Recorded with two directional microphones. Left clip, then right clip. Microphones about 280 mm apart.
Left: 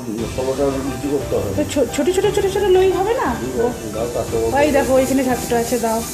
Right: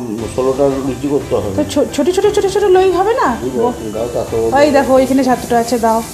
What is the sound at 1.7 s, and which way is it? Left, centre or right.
Speech, centre.